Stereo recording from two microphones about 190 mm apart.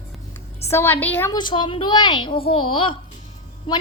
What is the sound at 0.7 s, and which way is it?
Speech, 10° left (ahead or behind).